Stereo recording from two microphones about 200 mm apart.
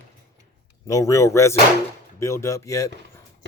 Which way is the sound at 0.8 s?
15° left (ahead or behind).